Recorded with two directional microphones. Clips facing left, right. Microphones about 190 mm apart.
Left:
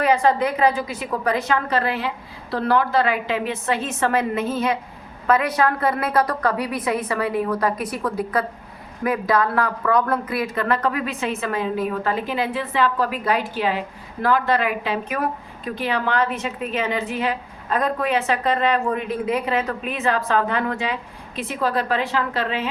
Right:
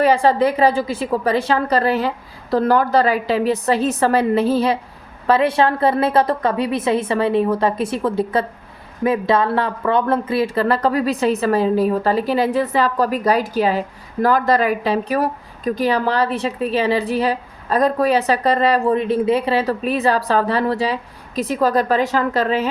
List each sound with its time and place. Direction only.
0.0 s a woman's voice: 30° right (ahead or behind)